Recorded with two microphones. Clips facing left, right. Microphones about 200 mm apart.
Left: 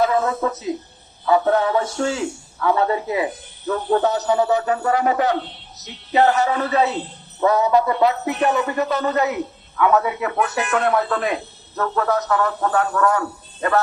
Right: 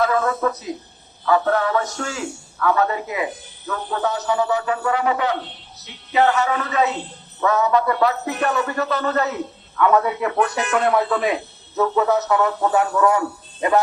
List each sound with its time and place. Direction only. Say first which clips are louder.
0.0 s music: left 1 dB; 20° left (ahead or behind)
3.7 s speech: left 5 dB; 35° left (ahead or behind)
7.4 s music: left 2 dB; 25° left (ahead or behind)
9.0 s a man's voice: left 1 dB; 15° left (ahead or behind); by 13.8 s 15° right (ahead or behind)